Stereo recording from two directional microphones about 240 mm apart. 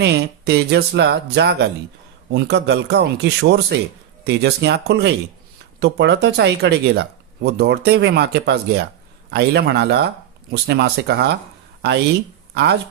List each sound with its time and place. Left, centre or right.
0.0 s speech: right